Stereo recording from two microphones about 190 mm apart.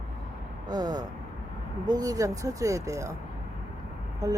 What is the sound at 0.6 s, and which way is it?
Speech, 20° right (ahead or behind).